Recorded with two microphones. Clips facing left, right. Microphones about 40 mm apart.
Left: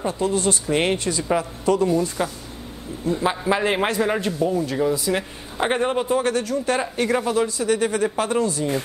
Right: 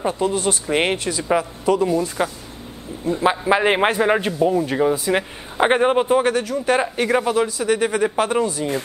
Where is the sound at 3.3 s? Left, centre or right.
Right.